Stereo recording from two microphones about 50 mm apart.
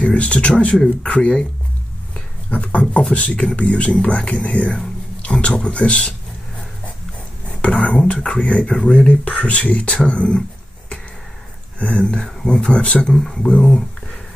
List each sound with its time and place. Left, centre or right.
0.0 s speech: left
2.5 s speech: left
7.8 s speech: left
11.8 s speech: left
13.1 s speech: centre